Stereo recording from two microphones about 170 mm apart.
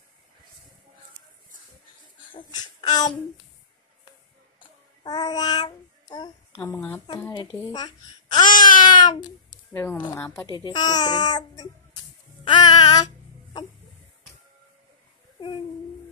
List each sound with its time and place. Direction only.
2.3 s a sound: 25° left (ahead or behind)
4.6 s child singing: 25° left (ahead or behind)
6.5 s speech: 10° left (ahead or behind)
7.6 s a child's voice: 25° left (ahead or behind)
8.6 s a sound: 25° left (ahead or behind)
9.7 s speech: 10° left (ahead or behind)
10.4 s speech: 25° left (ahead or behind)
12.4 s babbling: 25° left (ahead or behind)